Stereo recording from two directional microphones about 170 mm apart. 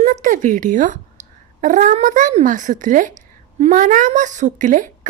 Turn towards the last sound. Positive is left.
turn(degrees=-45)  # may be behind; listen again after turning